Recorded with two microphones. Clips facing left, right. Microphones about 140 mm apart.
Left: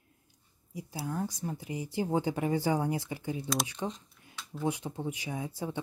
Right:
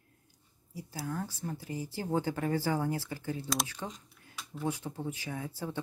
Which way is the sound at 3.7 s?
15° left (ahead or behind).